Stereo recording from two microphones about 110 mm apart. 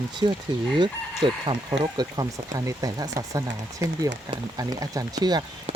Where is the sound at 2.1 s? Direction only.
35° right (ahead or behind).